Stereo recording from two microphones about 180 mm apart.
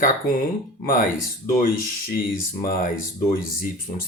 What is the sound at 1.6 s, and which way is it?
Speech, 50° left (ahead or behind).